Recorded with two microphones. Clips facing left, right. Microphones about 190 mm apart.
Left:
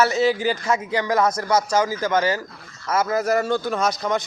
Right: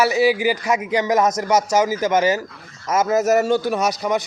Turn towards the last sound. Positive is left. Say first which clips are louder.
# right 2 dB
turn(degrees=-15)  # may be behind; listen again after turning